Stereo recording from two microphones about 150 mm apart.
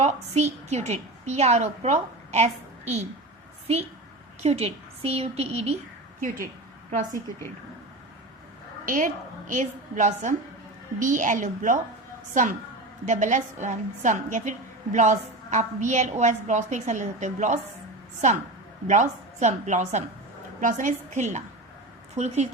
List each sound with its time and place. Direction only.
0.0 s a woman's voice: 50° right (ahead or behind)
3.7 s a woman's voice: 45° right (ahead or behind)
8.9 s a woman's voice: 60° right (ahead or behind)